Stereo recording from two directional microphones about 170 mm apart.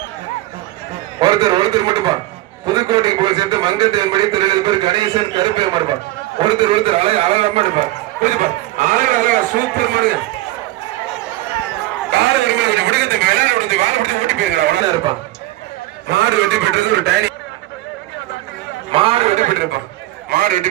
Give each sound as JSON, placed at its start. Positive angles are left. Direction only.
{"t": 1.2, "sound": "a man's voice", "side_deg": -25}
{"t": 8.2, "sound": "a man's voice", "side_deg": -50}
{"t": 12.1, "sound": "a sound", "side_deg": -90}
{"t": 16.0, "sound": "a man's voice", "side_deg": -80}
{"t": 18.9, "sound": "a man's voice", "side_deg": -30}